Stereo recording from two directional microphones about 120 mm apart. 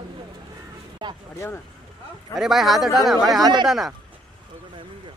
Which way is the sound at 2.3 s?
Centre (ahead or behind).